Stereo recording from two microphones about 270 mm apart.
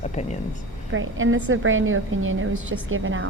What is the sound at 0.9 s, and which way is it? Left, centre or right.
A woman's voice, right.